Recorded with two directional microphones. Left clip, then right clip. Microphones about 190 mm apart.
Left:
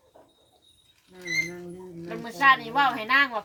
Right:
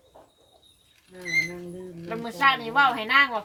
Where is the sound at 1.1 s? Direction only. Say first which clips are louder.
Right 3 dB; 55° left (ahead or behind).